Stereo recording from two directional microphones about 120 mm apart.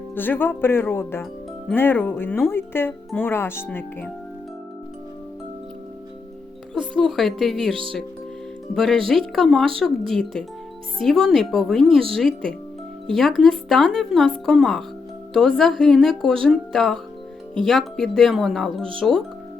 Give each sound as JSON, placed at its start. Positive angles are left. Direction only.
{"t": 0.2, "sound": "speech", "side_deg": 15}
{"t": 6.9, "sound": "speech", "side_deg": 5}